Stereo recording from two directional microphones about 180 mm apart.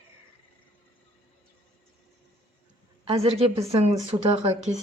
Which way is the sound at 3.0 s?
35° right (ahead or behind).